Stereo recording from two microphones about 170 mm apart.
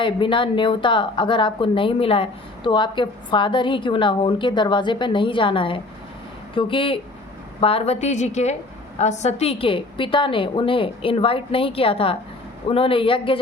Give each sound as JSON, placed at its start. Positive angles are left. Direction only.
{"t": 0.0, "sound": "a woman's voice", "side_deg": 30}